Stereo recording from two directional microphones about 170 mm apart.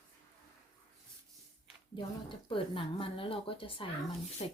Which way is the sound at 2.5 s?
30° left (ahead or behind).